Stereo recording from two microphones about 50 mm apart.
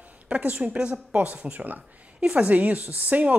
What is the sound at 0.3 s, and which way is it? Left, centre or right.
Speech, right.